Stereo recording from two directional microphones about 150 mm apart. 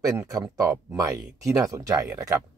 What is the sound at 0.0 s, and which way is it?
Speech, 20° right (ahead or behind).